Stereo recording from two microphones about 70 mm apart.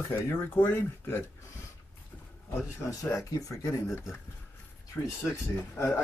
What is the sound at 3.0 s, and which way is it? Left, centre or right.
Speech, left.